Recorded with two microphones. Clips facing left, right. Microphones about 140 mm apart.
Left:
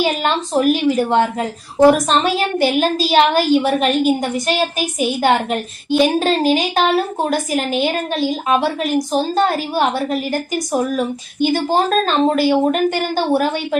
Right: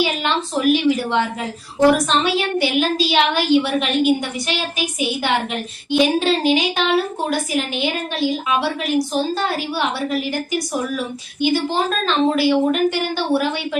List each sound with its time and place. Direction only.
0.0 s a woman's voice: 45° left (ahead or behind)